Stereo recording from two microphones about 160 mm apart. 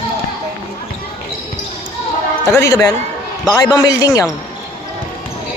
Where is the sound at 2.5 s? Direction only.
20° left (ahead or behind).